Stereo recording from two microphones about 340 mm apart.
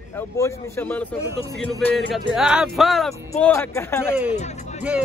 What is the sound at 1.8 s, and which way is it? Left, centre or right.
Music, centre.